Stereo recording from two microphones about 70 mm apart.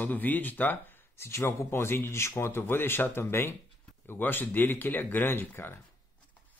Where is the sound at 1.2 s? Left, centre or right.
Left.